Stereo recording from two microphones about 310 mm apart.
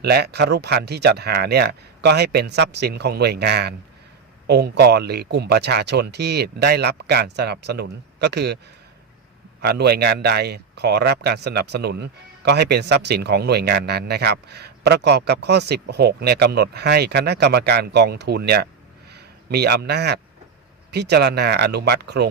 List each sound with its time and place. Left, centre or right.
0.0 s speech: right
9.6 s speech: right